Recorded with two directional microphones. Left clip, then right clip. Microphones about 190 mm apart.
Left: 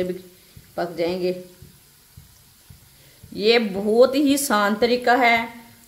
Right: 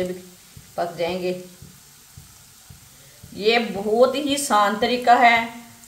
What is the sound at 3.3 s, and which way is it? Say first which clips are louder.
Speech: left 1 dB; 55° left (ahead or behind).